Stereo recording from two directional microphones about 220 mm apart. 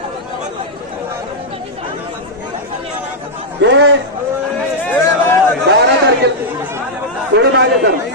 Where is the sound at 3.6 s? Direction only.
55° right (ahead or behind).